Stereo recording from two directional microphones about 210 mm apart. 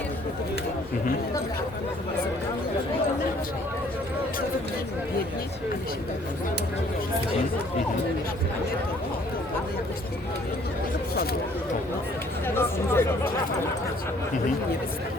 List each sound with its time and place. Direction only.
12.5 s speech: 10° left (ahead or behind)